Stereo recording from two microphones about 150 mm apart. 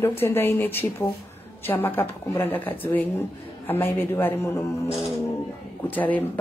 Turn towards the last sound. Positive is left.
turn(degrees=10)  # may be behind; listen again after turning